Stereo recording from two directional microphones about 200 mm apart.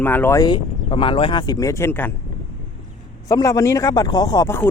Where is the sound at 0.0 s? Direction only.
10° left (ahead or behind).